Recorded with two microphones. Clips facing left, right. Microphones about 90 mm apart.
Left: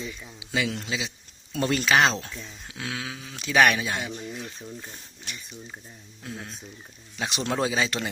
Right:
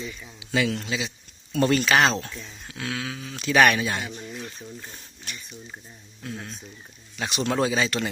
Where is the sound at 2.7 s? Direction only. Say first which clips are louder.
Right 3 dB; 15° left (ahead or behind).